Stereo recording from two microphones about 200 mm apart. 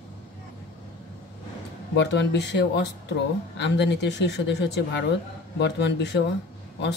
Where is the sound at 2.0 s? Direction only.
60° left (ahead or behind).